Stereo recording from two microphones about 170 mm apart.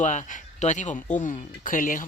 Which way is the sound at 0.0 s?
45° left (ahead or behind).